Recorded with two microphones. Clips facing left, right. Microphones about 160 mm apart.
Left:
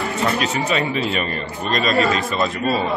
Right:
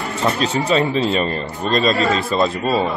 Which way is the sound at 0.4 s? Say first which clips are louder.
Right 3 dB; 30° right (ahead or behind).